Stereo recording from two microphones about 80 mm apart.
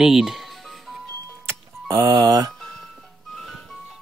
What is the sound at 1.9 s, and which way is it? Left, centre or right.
Speech, right.